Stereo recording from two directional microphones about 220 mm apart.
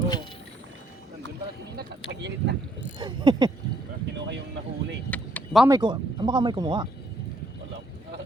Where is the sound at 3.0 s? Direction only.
20° right (ahead or behind).